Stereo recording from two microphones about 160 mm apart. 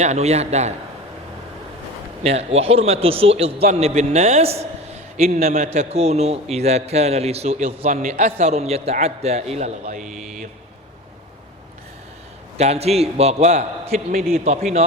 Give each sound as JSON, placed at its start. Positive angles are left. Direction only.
{"t": 0.0, "sound": "a man's voice", "side_deg": -45}
{"t": 2.2, "sound": "a man's voice", "side_deg": -40}
{"t": 5.3, "sound": "a man's voice", "side_deg": -65}
{"t": 5.7, "sound": "a man's voice", "side_deg": -40}
{"t": 7.9, "sound": "a man's voice", "side_deg": -60}
{"t": 10.0, "sound": "mantra", "side_deg": -5}
{"t": 12.5, "sound": "a man's voice", "side_deg": -40}